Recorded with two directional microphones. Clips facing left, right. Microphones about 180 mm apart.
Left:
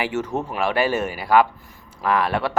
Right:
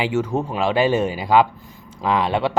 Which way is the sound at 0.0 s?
10° right (ahead or behind).